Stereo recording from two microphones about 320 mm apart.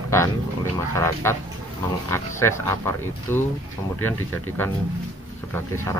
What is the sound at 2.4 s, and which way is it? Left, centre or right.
Speech, centre.